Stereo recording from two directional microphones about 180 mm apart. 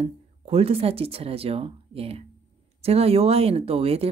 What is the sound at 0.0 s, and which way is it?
Speech, 35° right (ahead or behind).